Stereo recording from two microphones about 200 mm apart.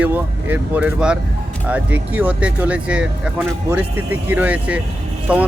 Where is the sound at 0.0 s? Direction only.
10° right (ahead or behind).